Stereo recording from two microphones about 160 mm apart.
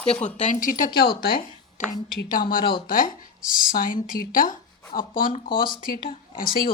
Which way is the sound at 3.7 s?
65° left (ahead or behind).